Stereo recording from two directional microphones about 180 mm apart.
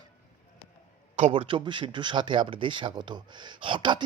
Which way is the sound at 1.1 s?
35° right (ahead or behind).